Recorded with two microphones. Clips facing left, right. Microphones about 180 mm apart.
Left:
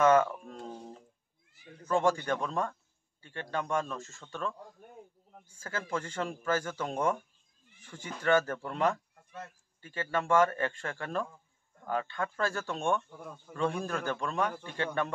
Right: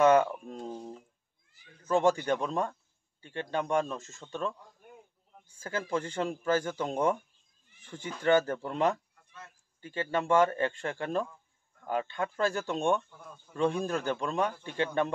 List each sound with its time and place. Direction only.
0.0 s a sound: 20° right (ahead or behind)
1.9 s a man's voice: 20° right (ahead or behind)
5.6 s a man's voice: 20° right (ahead or behind)